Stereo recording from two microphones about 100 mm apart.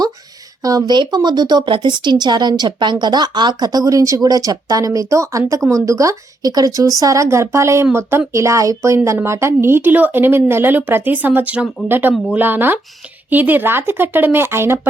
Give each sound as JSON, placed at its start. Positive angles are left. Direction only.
{"t": 0.6, "sound": "speech", "side_deg": -40}